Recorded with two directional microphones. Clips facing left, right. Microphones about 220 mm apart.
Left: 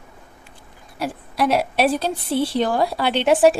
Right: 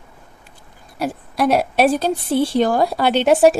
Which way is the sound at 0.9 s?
45° right (ahead or behind).